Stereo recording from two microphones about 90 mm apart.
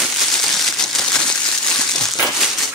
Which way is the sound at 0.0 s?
Centre (ahead or behind).